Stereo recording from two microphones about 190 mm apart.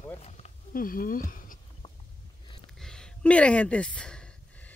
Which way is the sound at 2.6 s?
Centre (ahead or behind).